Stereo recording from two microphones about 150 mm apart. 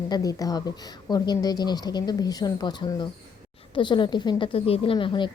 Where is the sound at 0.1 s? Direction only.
25° left (ahead or behind).